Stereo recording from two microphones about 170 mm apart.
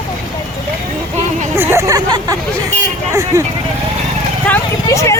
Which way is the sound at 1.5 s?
15° right (ahead or behind).